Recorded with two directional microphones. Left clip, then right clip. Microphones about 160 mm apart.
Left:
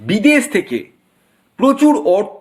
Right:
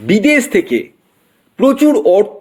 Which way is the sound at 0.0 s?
30° right (ahead or behind).